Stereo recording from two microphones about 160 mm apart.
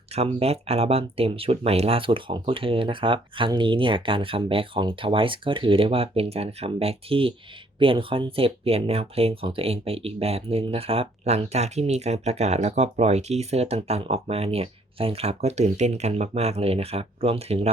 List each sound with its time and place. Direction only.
0.1 s speech: 40° right (ahead or behind)